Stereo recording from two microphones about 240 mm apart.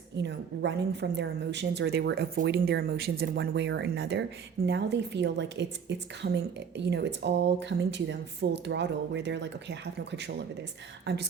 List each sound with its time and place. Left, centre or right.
0.2 s a woman's voice: right